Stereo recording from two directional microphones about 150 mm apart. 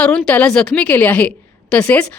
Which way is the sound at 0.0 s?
5° left (ahead or behind).